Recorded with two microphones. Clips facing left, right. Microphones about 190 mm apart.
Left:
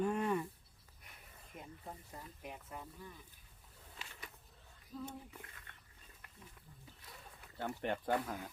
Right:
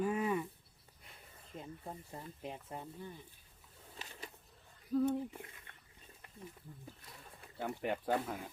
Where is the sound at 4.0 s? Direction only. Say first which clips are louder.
Right 4 dB; 30° right (ahead or behind).